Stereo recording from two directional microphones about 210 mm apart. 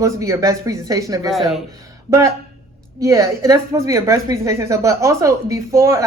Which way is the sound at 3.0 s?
15° right (ahead or behind).